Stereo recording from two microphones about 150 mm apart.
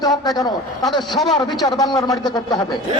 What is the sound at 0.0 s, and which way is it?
Speech, 25° left (ahead or behind).